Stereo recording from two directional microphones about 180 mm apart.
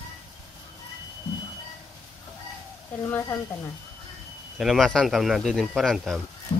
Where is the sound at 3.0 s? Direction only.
15° left (ahead or behind).